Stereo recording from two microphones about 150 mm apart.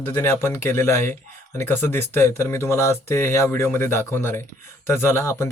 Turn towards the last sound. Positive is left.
turn(degrees=20)  # may be behind; listen again after turning